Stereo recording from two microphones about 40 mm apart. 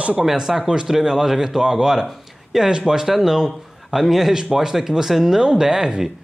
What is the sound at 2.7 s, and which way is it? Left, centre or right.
Speech, centre.